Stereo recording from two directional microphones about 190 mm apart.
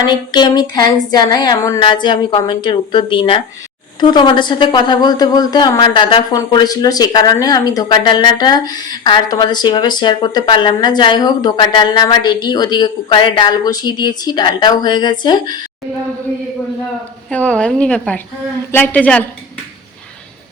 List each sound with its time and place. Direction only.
0.0 s a woman's voice: 25° left (ahead or behind)
17.2 s a woman's voice: 5° left (ahead or behind)